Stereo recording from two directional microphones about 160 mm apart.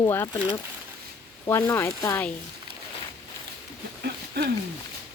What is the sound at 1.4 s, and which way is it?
Speech, 15° left (ahead or behind).